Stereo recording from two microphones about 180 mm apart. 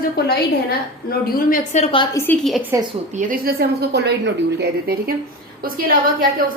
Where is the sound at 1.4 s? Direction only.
50° left (ahead or behind).